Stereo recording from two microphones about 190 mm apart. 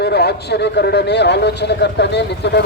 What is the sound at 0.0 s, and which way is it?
A man's voice, 60° left (ahead or behind).